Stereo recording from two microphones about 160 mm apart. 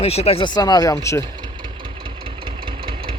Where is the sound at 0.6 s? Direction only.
25° left (ahead or behind).